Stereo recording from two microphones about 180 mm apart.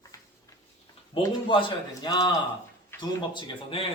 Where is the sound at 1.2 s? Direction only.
30° left (ahead or behind).